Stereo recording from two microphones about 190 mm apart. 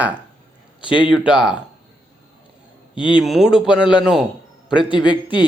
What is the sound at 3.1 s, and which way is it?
Speech, centre (ahead or behind).